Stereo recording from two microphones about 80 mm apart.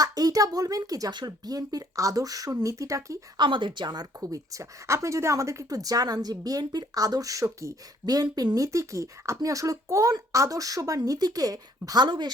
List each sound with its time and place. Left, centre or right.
0.0 s a woman's voice: right
3.3 s a woman's voice: right
8.0 s a woman's voice: right
12.0 s speech: right